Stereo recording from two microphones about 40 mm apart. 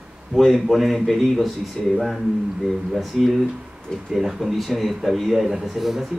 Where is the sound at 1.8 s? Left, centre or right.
Centre.